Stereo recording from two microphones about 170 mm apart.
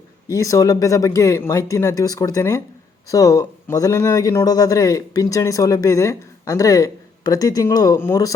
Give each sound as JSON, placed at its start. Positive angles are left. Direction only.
{"t": 0.3, "sound": "a man's voice", "side_deg": 20}